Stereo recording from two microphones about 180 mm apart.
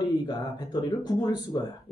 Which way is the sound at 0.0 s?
20° left (ahead or behind).